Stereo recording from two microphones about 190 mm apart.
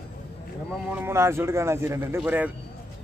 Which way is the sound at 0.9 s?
15° right (ahead or behind).